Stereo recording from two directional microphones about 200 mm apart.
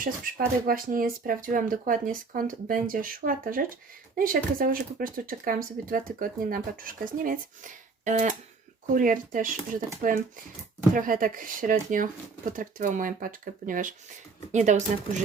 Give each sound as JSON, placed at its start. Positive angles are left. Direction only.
{"t": 0.0, "sound": "speech", "side_deg": -45}